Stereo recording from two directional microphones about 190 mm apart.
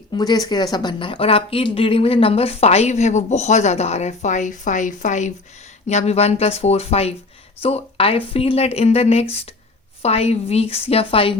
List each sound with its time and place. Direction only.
0.1 s a woman's voice: 20° left (ahead or behind)